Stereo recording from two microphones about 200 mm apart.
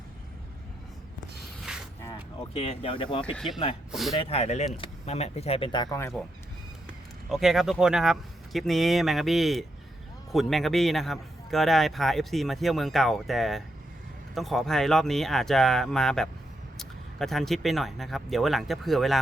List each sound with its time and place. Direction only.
1.7 s mechanisms: 5° right (ahead or behind)
2.6 s speech: 30° left (ahead or behind); by 6.2 s 10° left (ahead or behind)
7.3 s a man's voice: centre (ahead or behind)